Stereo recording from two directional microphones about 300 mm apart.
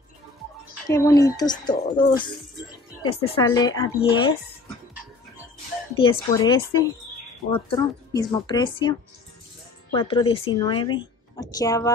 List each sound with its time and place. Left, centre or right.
0.8 s speech: centre
5.9 s speech: centre
9.9 s speech: centre